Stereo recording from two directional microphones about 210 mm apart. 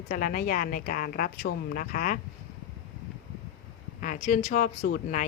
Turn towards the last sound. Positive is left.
turn(degrees=40)  # may be behind; listen again after turning